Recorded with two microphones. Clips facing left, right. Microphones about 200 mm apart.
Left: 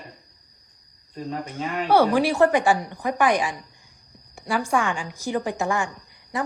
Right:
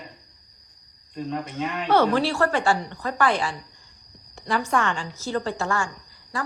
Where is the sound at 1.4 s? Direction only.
15° left (ahead or behind).